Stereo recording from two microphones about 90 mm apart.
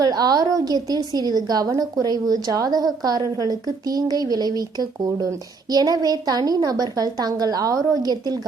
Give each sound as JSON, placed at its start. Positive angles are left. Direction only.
{"t": 0.0, "sound": "a woman's voice", "side_deg": -45}